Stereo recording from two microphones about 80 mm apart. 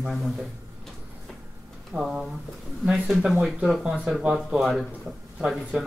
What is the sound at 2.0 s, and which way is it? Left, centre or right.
Speech, centre.